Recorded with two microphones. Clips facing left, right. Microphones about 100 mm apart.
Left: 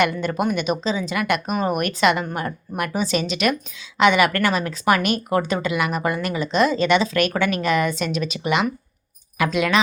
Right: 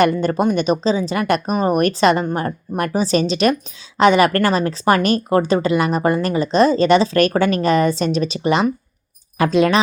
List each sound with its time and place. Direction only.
0.0 s speech: 35° right (ahead or behind)